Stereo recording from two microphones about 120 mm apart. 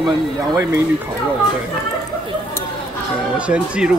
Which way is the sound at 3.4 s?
10° right (ahead or behind).